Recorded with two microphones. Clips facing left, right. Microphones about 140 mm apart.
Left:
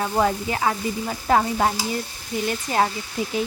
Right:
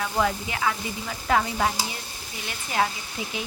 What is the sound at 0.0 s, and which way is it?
Stir, 35° left (ahead or behind).